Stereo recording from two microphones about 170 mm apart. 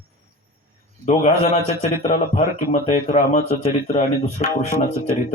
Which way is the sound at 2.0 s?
45° left (ahead or behind).